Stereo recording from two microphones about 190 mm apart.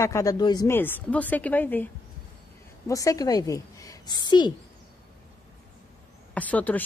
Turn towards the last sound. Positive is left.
turn(degrees=10)  # may be behind; listen again after turning